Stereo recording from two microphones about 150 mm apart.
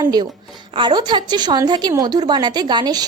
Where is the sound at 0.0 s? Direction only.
25° right (ahead or behind).